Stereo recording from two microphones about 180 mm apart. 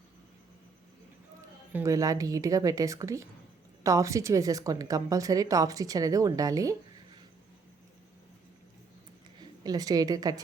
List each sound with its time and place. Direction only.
1.7 s a woman's voice: 15° right (ahead or behind)
9.4 s a woman's voice: 20° right (ahead or behind)